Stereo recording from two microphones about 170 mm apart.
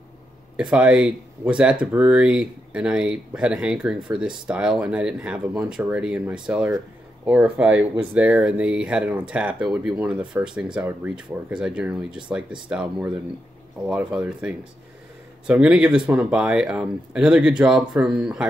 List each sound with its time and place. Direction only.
0.6 s speech: 5° right (ahead or behind)